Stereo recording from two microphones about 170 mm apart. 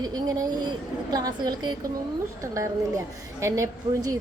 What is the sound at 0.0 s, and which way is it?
A woman's voice, 20° right (ahead or behind).